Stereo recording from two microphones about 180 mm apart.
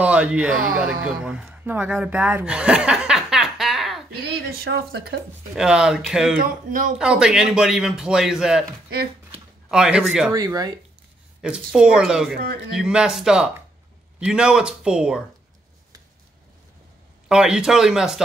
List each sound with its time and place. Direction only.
0.0 s speech: 5° right (ahead or behind)
4.1 s speech: 60° right (ahead or behind)
5.6 s a man's voice: 5° right (ahead or behind)
6.3 s speech: 50° right (ahead or behind)
7.0 s a man's voice: 5° right (ahead or behind)
9.7 s a man's voice: 5° right (ahead or behind)
10.3 s speech: 20° right (ahead or behind)
11.4 s a man's voice: 5° right (ahead or behind)
17.3 s a man's voice: 5° right (ahead or behind)